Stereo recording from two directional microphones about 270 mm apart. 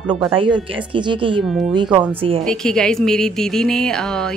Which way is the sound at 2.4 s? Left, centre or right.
Centre.